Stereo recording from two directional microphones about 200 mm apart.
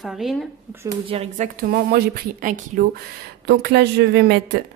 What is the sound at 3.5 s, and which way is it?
Speech, 55° right (ahead or behind).